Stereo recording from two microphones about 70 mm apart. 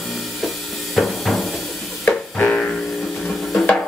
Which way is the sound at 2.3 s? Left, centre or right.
Centre.